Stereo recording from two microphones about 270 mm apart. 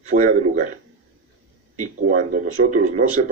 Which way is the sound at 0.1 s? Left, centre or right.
Right.